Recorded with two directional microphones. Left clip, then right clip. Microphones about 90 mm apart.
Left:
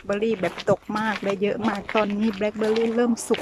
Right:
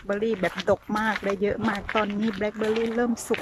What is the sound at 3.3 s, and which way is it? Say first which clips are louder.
Speech: left 2 dB; 25° left (ahead or behind).